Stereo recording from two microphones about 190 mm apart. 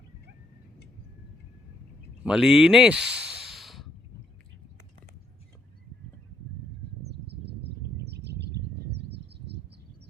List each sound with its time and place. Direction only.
2.2 s speech: 5° right (ahead or behind)
7.9 s a sound: 60° right (ahead or behind)
9.0 s bird: 60° right (ahead or behind)